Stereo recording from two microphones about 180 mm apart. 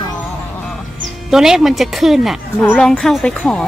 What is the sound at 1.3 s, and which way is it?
A woman's voice, centre (ahead or behind).